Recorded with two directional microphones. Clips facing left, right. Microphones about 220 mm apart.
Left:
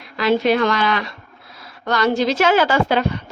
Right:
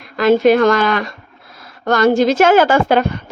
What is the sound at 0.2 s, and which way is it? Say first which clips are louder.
A woman's voice: right 6 dB; 45° right (ahead or behind).